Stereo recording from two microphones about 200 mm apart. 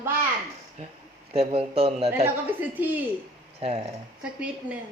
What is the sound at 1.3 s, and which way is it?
Speech, 30° right (ahead or behind).